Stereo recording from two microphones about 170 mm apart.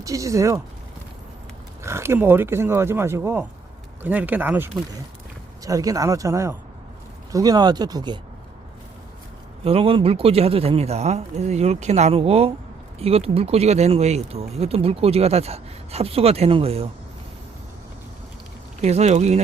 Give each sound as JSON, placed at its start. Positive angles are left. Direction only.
{"t": 0.0, "sound": "speech", "side_deg": -20}
{"t": 1.8, "sound": "speech", "side_deg": -15}
{"t": 9.6, "sound": "speech", "side_deg": -35}
{"t": 18.8, "sound": "speech", "side_deg": -40}